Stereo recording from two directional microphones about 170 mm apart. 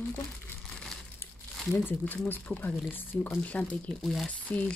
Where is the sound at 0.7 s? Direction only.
5° left (ahead or behind).